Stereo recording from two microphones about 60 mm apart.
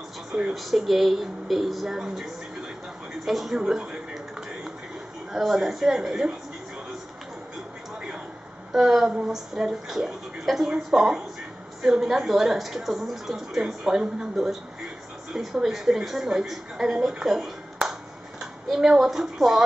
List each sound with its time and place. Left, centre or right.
0.3 s speech: centre
0.6 s a woman's voice: centre
5.3 s a woman's voice: centre
8.7 s a woman's voice: centre
17.1 s a sound: centre
18.4 s a woman's voice: centre